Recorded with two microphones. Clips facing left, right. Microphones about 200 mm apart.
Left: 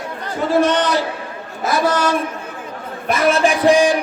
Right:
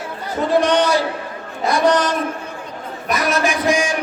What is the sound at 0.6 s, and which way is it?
Speech, 10° right (ahead or behind).